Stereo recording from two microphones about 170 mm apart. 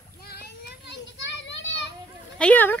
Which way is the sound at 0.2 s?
70° left (ahead or behind).